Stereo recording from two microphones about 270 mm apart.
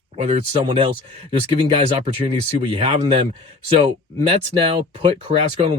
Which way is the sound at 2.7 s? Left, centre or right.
Right.